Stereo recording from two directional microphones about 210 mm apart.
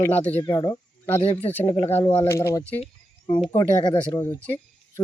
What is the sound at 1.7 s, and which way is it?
Speech, 25° left (ahead or behind).